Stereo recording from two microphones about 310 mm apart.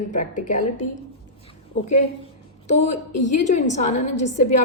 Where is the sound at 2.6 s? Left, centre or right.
Left.